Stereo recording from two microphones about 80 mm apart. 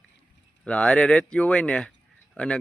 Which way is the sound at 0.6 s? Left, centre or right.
Centre.